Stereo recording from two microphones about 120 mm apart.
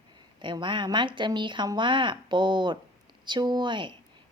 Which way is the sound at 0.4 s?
40° right (ahead or behind).